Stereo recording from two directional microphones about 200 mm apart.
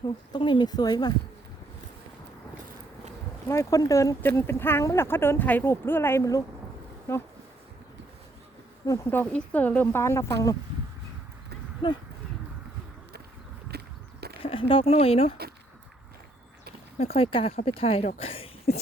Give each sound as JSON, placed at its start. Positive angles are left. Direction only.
{"t": 0.0, "sound": "speech", "side_deg": 25}
{"t": 3.5, "sound": "speech", "side_deg": 15}
{"t": 8.9, "sound": "speech", "side_deg": 10}
{"t": 11.8, "sound": "speech", "side_deg": 25}
{"t": 13.7, "sound": "a sound", "side_deg": -55}
{"t": 14.4, "sound": "speech", "side_deg": 25}
{"t": 17.2, "sound": "speech", "side_deg": 30}